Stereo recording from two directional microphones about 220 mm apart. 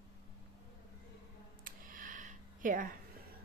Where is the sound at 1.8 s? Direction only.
35° right (ahead or behind).